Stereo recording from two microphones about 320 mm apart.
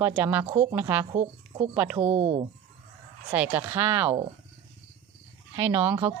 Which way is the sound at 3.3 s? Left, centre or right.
Centre.